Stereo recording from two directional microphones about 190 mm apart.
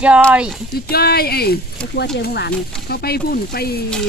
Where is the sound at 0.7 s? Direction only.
55° left (ahead or behind).